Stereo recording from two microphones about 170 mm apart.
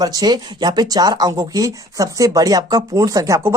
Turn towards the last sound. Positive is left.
turn(degrees=-20)  # may be behind; listen again after turning